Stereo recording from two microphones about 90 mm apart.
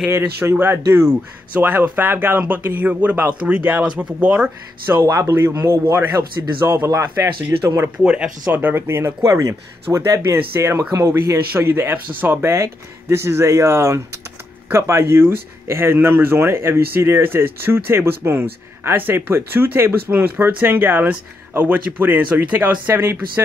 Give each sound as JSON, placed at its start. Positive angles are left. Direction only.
{"t": 0.5, "sound": "speech", "side_deg": -30}
{"t": 5.0, "sound": "speech", "side_deg": -30}